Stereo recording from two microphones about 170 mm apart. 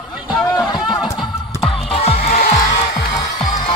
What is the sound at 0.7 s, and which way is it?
Music, 25° left (ahead or behind).